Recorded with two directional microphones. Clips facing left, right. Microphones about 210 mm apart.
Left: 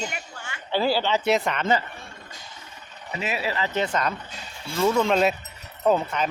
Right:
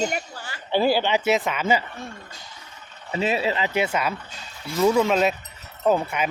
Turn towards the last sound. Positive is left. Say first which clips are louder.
# even
turn(degrees=-10)  # may be behind; listen again after turning